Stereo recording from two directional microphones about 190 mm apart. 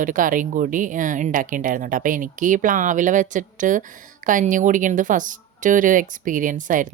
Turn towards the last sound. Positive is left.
turn(degrees=-45)  # may be behind; listen again after turning